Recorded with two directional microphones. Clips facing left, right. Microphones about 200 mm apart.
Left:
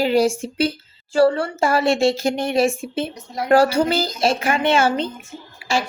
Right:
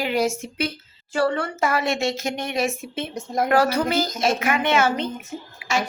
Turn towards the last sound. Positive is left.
turn(degrees=30)  # may be behind; listen again after turning